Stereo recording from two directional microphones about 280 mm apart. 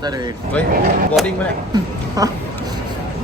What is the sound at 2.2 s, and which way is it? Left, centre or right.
Speech, centre.